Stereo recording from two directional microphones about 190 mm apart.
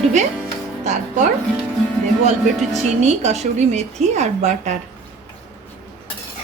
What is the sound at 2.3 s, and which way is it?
A woman's voice, 35° right (ahead or behind).